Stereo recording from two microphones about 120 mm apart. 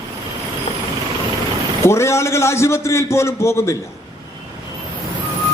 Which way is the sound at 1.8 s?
25° left (ahead or behind).